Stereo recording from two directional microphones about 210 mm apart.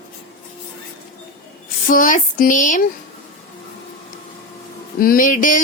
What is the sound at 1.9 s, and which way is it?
Speech, 40° left (ahead or behind).